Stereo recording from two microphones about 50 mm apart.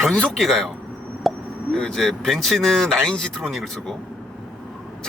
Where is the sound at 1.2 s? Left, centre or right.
Centre.